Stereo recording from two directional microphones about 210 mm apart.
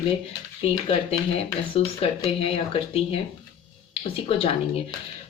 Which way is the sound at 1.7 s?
25° left (ahead or behind).